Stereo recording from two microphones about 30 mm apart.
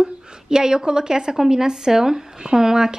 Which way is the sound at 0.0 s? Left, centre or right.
Right.